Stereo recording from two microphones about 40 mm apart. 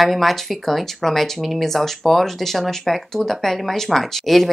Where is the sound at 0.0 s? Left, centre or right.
Centre.